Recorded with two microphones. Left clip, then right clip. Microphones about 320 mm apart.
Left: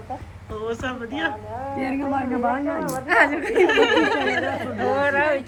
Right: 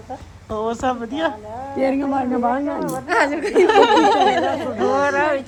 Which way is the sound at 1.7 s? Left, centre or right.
Right.